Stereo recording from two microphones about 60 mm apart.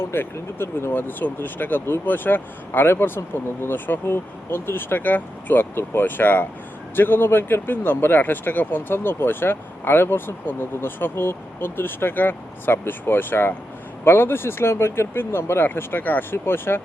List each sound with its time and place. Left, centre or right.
0.0 s speech: left